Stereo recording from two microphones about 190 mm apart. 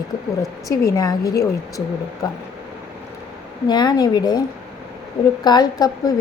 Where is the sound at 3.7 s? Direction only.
20° left (ahead or behind).